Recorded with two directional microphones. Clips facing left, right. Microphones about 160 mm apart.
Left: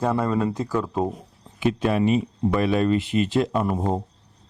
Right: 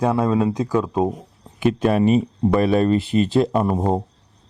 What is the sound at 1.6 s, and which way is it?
Speech, 50° right (ahead or behind).